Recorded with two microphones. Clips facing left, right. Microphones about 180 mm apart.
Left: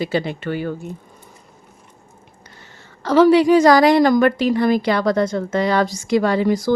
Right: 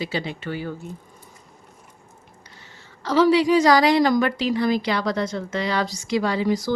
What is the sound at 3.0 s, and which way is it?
Speech, 55° left (ahead or behind).